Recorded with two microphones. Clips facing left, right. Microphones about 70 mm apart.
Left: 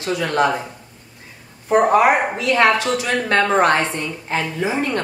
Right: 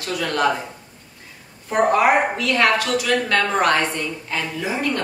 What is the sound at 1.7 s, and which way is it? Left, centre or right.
A woman's voice, left.